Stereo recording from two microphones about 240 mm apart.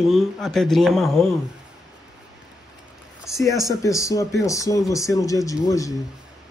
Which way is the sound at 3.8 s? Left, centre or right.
Centre.